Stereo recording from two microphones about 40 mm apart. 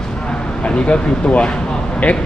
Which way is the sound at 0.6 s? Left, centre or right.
Left.